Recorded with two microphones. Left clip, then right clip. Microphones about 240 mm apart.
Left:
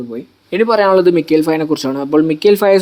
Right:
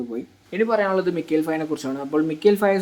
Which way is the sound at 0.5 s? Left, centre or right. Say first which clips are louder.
Left 10 dB; left.